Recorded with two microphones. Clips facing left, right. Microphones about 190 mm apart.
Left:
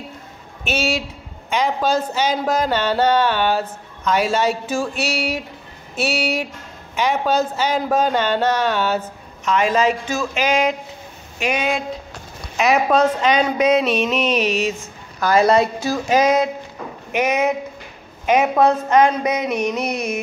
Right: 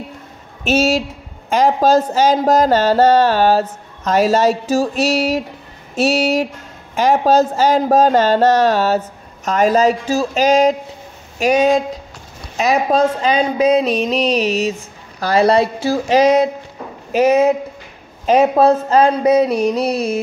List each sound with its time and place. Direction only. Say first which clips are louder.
0.7 s speech: right 7 dB; 45° right (ahead or behind)